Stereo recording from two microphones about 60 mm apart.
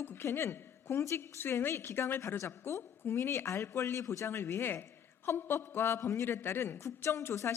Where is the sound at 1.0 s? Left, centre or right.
Left.